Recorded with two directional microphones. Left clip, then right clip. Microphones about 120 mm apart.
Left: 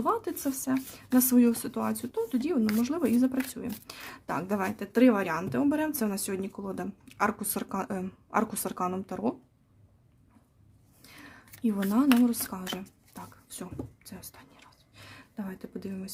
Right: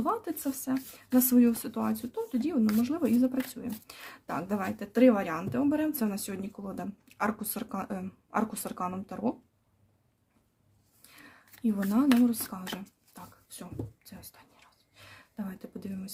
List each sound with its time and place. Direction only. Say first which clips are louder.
0.0 s speech: left 2 dB; 35° left (ahead or behind)
11.1 s a sound: left 3 dB; 35° left (ahead or behind)
11.9 s speech: left 1 dB; 35° left (ahead or behind)